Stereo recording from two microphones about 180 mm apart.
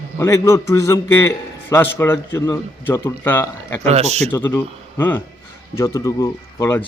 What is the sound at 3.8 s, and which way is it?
Speech, 35° right (ahead or behind).